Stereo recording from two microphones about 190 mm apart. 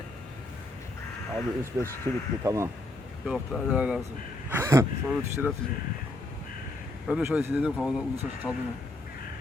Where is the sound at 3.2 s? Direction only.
Centre (ahead or behind).